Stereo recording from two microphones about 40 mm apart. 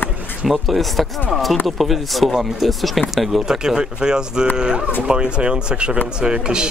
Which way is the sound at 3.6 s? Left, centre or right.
Centre.